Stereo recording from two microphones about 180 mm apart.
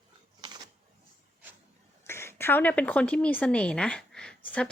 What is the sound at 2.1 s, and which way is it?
A woman's voice, 15° left (ahead or behind).